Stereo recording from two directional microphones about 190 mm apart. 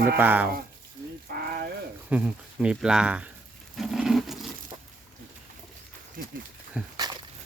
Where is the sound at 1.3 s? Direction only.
55° right (ahead or behind).